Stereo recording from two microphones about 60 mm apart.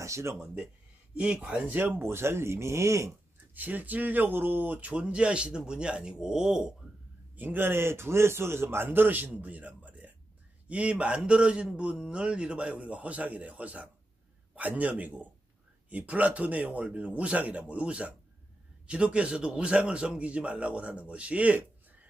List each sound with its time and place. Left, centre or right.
0.0 s speech: right
1.1 s a man's voice: centre
1.7 s speech: right
3.5 s a man's voice: right; by 6.7 s centre
7.3 s a man's voice: right